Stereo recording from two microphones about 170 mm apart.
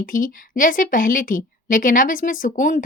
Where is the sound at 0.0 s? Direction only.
55° left (ahead or behind).